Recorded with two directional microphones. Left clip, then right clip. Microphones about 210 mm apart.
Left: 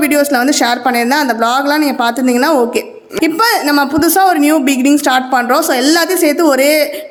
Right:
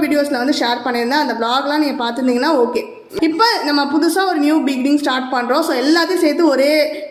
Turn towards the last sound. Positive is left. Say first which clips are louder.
# left 3 dB
turn(degrees=30)  # may be behind; listen again after turning